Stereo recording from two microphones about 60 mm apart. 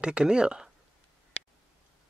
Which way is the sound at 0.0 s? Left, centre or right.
Centre.